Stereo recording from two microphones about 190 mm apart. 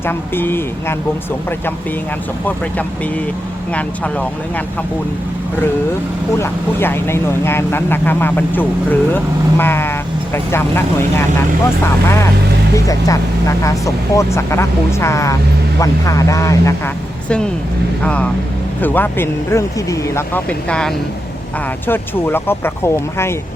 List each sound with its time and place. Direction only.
0.0 s speech: 10° left (ahead or behind)
3.7 s speech: 5° left (ahead or behind)
6.3 s speech: 15° left (ahead or behind)